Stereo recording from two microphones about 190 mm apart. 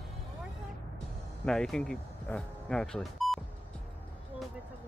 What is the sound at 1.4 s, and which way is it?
Speech, 5° left (ahead or behind).